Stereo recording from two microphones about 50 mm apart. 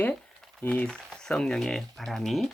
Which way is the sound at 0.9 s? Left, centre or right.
Centre.